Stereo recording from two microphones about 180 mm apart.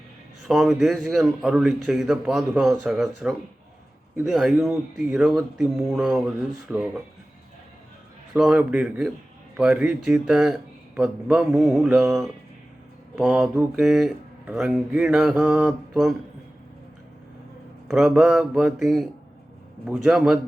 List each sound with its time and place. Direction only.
0.4 s speech: centre (ahead or behind)
8.4 s speech: 5° right (ahead or behind)
17.8 s speech: centre (ahead or behind)